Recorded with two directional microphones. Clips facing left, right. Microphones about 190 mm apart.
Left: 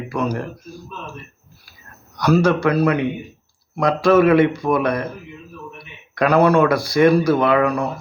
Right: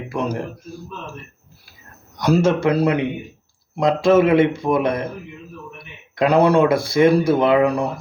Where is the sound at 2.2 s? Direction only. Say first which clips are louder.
Left 1 dB; 25° right (ahead or behind).